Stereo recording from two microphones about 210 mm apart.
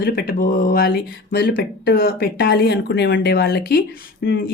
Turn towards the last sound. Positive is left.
turn(degrees=55)  # may be behind; listen again after turning